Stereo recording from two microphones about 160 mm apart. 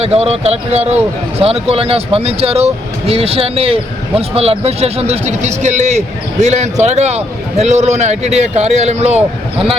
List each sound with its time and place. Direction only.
0.0 s a man's voice: 40° right (ahead or behind)